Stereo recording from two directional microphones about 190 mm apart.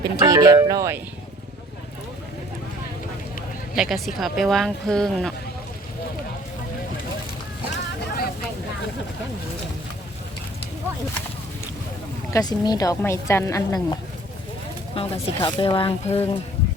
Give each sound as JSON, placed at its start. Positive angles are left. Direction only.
{"t": 0.0, "sound": "speech", "side_deg": -20}
{"t": 3.8, "sound": "speech", "side_deg": 0}
{"t": 7.7, "sound": "vehicle", "side_deg": 55}
{"t": 12.3, "sound": "a woman's voice", "side_deg": 20}